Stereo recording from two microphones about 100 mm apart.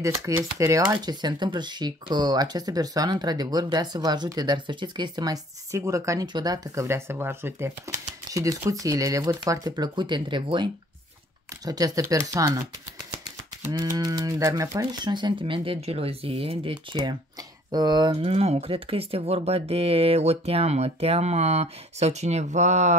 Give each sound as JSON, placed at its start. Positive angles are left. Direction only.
{"t": 0.0, "sound": "speech", "side_deg": -30}
{"t": 0.9, "sound": "speech", "side_deg": -45}
{"t": 6.2, "sound": "speech", "side_deg": -45}
{"t": 9.9, "sound": "speech", "side_deg": -50}
{"t": 11.6, "sound": "speech", "side_deg": -40}
{"t": 13.7, "sound": "speech", "side_deg": -35}
{"t": 17.6, "sound": "speech", "side_deg": -45}
{"t": 18.2, "sound": "speech", "side_deg": -85}